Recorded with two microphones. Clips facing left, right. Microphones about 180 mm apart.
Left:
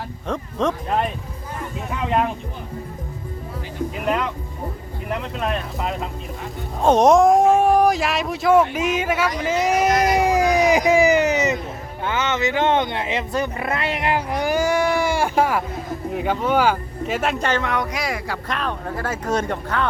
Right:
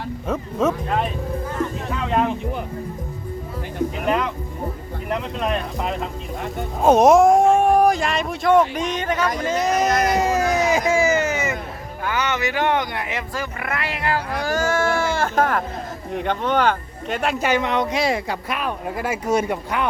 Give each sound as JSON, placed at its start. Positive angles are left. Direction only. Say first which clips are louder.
{"t": 0.6, "sound": "speech", "louder": "right 2 dB", "side_deg": -5}
{"t": 4.0, "sound": "speech", "louder": "even", "side_deg": 5}
{"t": 5.4, "sound": "speech", "louder": "even", "side_deg": 0}
{"t": 9.6, "sound": "cat", "louder": "left 1 dB", "side_deg": 10}
{"t": 12.0, "sound": "speech", "louder": "left 1 dB", "side_deg": 20}
{"t": 17.4, "sound": "speech", "louder": "right 2 dB", "side_deg": -10}
{"t": 17.7, "sound": "speech", "louder": "right 4 dB", "side_deg": -25}
{"t": 18.4, "sound": "speech", "louder": "even", "side_deg": -10}